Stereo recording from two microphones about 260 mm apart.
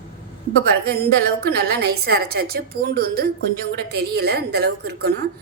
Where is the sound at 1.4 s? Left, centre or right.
Right.